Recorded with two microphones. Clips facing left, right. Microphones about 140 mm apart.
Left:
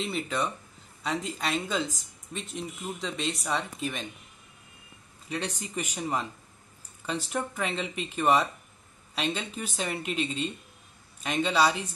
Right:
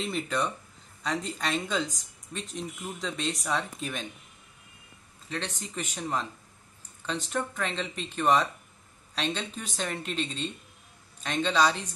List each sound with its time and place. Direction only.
0.0 s speech: centre (ahead or behind)
5.3 s speech: 10° left (ahead or behind)